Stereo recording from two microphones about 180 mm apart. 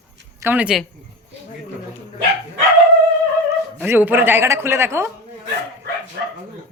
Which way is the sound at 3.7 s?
10° right (ahead or behind).